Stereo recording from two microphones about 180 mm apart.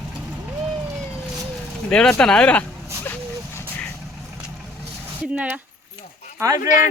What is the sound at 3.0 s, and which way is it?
Vehicle, 10° left (ahead or behind).